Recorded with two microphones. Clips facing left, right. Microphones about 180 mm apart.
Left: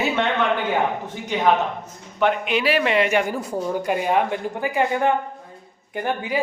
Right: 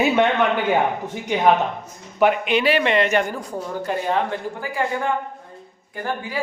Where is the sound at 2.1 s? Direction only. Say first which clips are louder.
Right 3 dB; 10° right (ahead or behind).